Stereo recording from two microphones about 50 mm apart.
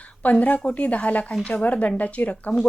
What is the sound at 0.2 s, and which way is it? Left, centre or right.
Speech, left.